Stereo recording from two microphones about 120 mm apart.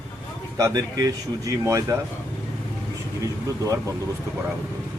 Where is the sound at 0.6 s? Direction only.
30° right (ahead or behind).